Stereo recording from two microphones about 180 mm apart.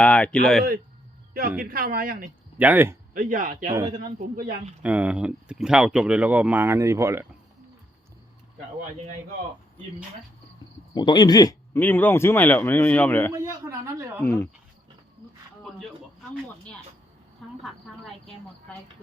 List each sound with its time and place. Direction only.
0.0 s speech: 5° left (ahead or behind)
1.3 s speech: 55° right (ahead or behind)
2.6 s speech: 10° right (ahead or behind)
3.2 s speech: 45° right (ahead or behind)
3.8 s speech: 25° right (ahead or behind)
4.8 s speech: 5° right (ahead or behind)
10.9 s speech: 25° left (ahead or behind)
11.8 s a man's voice: 10° left (ahead or behind)
13.3 s speech: 15° right (ahead or behind)
14.2 s a man's voice: 15° left (ahead or behind)
15.6 s a sound: 5° left (ahead or behind)
17.6 s a sound: centre (ahead or behind)
18.7 s a man's voice: 10° left (ahead or behind)